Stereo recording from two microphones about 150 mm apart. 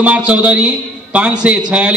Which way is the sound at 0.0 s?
10° right (ahead or behind).